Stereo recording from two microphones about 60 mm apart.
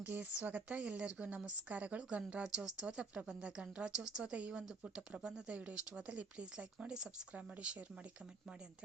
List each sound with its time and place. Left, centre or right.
0.0 s a woman's voice: right